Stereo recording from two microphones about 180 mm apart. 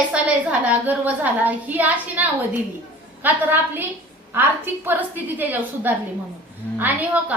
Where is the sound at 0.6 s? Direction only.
10° right (ahead or behind).